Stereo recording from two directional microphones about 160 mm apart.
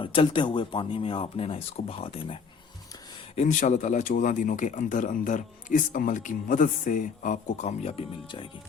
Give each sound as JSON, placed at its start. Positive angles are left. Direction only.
{"t": 0.0, "sound": "speech", "side_deg": 35}
{"t": 3.3, "sound": "speech", "side_deg": 50}